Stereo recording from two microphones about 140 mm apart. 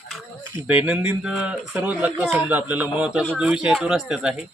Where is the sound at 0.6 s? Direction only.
10° right (ahead or behind).